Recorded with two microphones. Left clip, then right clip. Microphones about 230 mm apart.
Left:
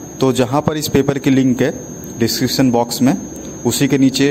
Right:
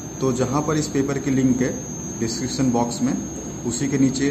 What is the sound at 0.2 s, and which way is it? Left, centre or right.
A man's voice, left.